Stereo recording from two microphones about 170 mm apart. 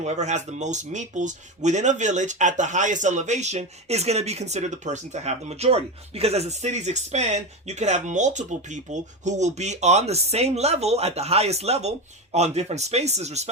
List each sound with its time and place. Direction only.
0.0 s speech: 45° right (ahead or behind)